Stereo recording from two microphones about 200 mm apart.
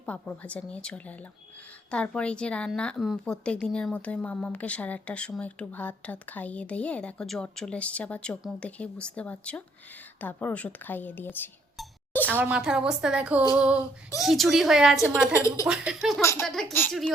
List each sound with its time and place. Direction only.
0.0 s a woman's voice: 5° left (ahead or behind)
12.3 s a woman's voice: 10° right (ahead or behind)
15.4 s speech: 15° left (ahead or behind)
15.6 s a woman's voice: 5° right (ahead or behind)
16.2 s speech: 15° left (ahead or behind)
16.5 s a woman's voice: centre (ahead or behind)